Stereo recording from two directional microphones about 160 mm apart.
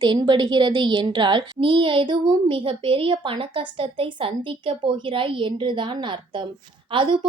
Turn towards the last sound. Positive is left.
turn(degrees=-30)  # may be behind; listen again after turning